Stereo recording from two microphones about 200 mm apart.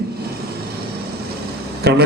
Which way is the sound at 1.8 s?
55° right (ahead or behind).